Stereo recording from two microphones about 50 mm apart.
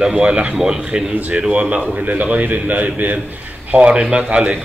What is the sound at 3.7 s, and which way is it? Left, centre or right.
Speech, centre.